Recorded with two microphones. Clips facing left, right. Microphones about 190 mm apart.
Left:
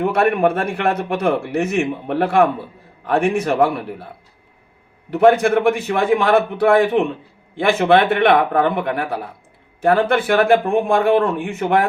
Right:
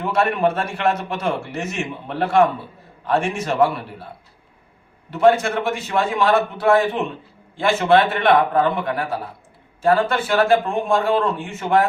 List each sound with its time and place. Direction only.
0.0 s a man's voice: 55° left (ahead or behind)
5.1 s a man's voice: 55° left (ahead or behind)